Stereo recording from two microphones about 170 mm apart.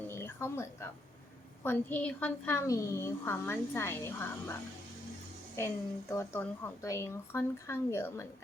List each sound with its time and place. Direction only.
0.1 s a sound: 15° left (ahead or behind)
1.6 s a woman's voice: 10° left (ahead or behind)
5.5 s a woman's voice: 15° left (ahead or behind)